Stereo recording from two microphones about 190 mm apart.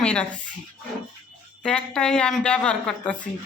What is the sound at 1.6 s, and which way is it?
A woman's voice, 5° left (ahead or behind).